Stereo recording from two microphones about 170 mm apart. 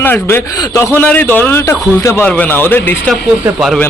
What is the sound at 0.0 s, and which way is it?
A man's voice, 10° left (ahead or behind).